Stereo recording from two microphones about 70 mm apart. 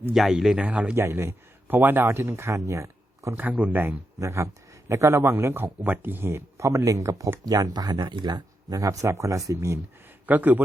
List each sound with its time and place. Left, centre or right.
0.1 s speech: centre
0.6 s a man's voice: centre
0.9 s speech: right
1.6 s speech: right
3.6 s a man's voice: right
4.2 s speech: right
7.4 s speech: right
8.8 s speech: right
10.2 s a man's voice: right